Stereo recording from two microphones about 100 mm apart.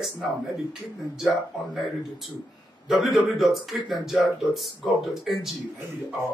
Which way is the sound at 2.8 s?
5° right (ahead or behind).